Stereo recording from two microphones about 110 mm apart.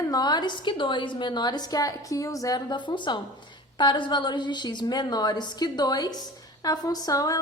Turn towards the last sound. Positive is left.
turn(degrees=35)  # may be behind; listen again after turning